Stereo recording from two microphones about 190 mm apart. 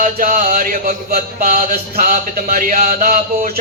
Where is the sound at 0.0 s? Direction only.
45° right (ahead or behind).